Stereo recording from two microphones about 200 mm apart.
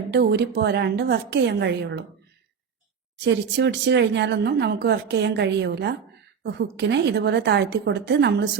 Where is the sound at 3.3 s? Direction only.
60° right (ahead or behind).